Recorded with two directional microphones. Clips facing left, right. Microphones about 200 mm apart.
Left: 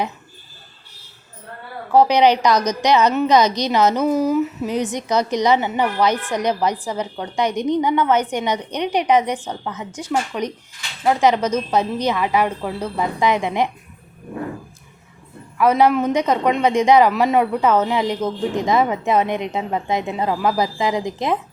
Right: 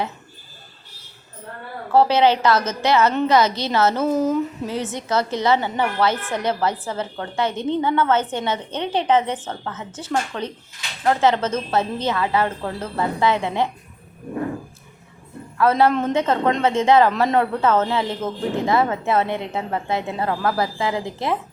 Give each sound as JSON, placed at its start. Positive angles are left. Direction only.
{"t": 1.9, "sound": "a man's voice", "side_deg": 15}
{"t": 4.1, "sound": "a sound", "side_deg": 0}
{"t": 4.6, "sound": "a man's voice", "side_deg": 15}
{"t": 15.5, "sound": "a man's voice", "side_deg": 15}